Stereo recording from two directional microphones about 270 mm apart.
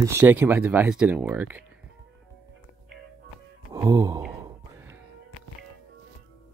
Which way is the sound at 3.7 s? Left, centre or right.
Centre.